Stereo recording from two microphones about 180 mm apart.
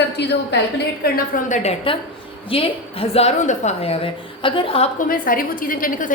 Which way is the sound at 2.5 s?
30° left (ahead or behind).